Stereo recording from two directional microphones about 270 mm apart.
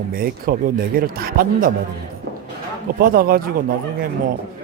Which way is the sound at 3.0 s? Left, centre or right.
Right.